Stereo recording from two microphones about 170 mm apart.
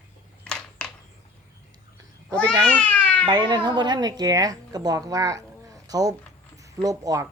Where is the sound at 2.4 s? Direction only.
5° left (ahead or behind).